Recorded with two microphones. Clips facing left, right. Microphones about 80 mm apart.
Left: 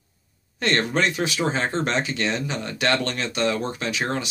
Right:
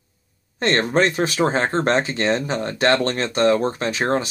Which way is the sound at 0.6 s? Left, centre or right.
Right.